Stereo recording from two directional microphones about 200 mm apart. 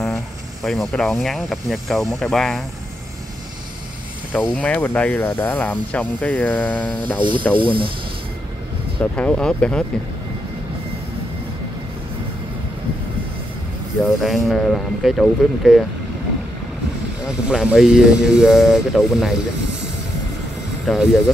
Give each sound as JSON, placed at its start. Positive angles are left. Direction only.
{"t": 0.7, "sound": "speech", "side_deg": 0}
{"t": 4.3, "sound": "speech", "side_deg": -5}
{"t": 4.6, "sound": "speech", "side_deg": 10}
{"t": 7.5, "sound": "speech", "side_deg": -25}
{"t": 9.0, "sound": "speech", "side_deg": 5}
{"t": 14.0, "sound": "speech", "side_deg": 0}
{"t": 17.3, "sound": "speech", "side_deg": -5}
{"t": 20.8, "sound": "speech", "side_deg": 0}